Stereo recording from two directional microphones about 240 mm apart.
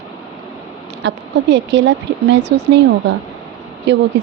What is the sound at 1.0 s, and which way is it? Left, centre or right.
A woman's voice, right.